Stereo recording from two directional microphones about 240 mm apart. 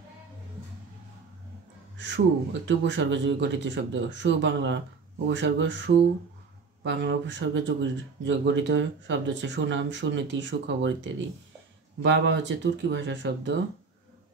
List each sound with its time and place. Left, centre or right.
2.0 s speech: right